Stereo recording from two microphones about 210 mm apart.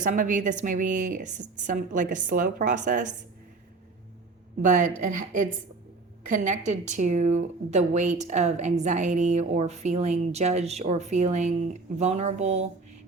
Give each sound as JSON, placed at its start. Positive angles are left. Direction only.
{"t": 0.0, "sound": "speech", "side_deg": -40}
{"t": 4.6, "sound": "speech", "side_deg": -40}